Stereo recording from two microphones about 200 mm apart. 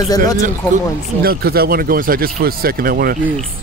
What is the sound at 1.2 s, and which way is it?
Speech, 50° right (ahead or behind).